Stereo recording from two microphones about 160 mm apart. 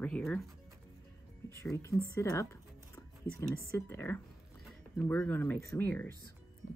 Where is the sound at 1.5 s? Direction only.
15° left (ahead or behind).